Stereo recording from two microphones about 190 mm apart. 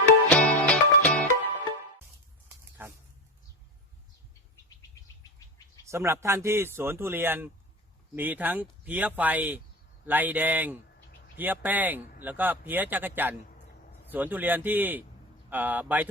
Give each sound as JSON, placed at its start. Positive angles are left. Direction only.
{"t": 0.3, "sound": "music", "side_deg": 5}
{"t": 2.8, "sound": "a sound", "side_deg": -10}
{"t": 5.8, "sound": "speech", "side_deg": -15}